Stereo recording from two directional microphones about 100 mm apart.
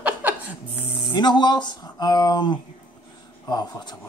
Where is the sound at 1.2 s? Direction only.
45° left (ahead or behind).